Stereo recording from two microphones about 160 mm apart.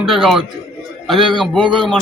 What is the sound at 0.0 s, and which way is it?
Speech, 5° right (ahead or behind).